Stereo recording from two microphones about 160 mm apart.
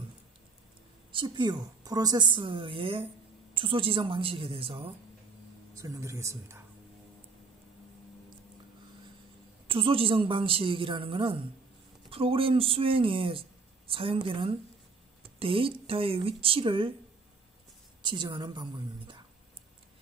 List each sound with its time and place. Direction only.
1.1 s speech: 30° right (ahead or behind)
5.8 s speech: 20° right (ahead or behind)
9.7 s speech: 35° right (ahead or behind)
18.0 s a woman's voice: 30° right (ahead or behind)